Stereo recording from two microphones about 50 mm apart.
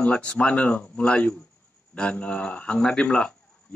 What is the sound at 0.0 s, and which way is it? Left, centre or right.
Speech, left.